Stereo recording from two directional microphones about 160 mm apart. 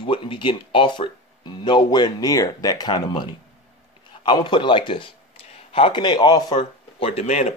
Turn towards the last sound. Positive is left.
turn(degrees=40)  # may be behind; listen again after turning